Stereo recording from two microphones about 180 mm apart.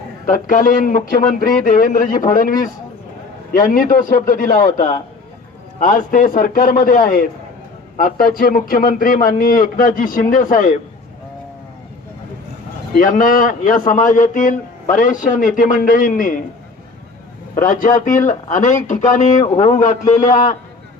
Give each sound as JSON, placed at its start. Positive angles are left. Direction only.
{"t": 0.3, "sound": "a man's voice", "side_deg": 50}
{"t": 13.0, "sound": "a man's voice", "side_deg": 50}
{"t": 17.5, "sound": "a man's voice", "side_deg": 45}